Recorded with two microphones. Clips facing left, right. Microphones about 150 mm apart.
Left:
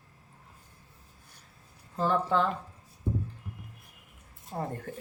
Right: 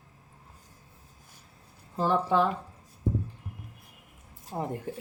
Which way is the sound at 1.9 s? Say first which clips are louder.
Right 2 dB; 15° right (ahead or behind).